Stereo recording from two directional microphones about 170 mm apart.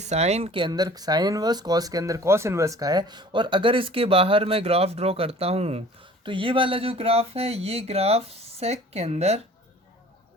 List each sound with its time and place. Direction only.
0.0 s speech: 40° right (ahead or behind)